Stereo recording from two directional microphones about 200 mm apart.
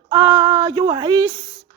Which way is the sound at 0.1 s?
15° right (ahead or behind).